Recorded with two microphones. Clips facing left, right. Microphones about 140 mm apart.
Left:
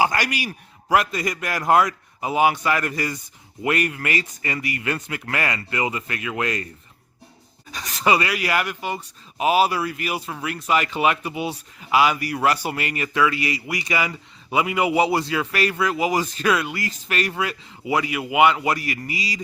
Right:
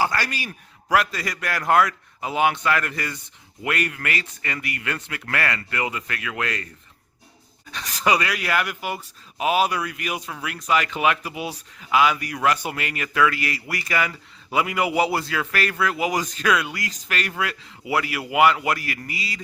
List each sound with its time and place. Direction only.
0.0 s a man's voice: 15° left (ahead or behind)
7.7 s a man's voice: 5° left (ahead or behind)
17.8 s a man's voice: 20° left (ahead or behind)